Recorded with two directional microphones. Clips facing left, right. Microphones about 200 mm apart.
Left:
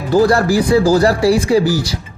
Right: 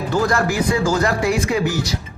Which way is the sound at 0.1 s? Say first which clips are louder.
Left 8 dB; 35° left (ahead or behind).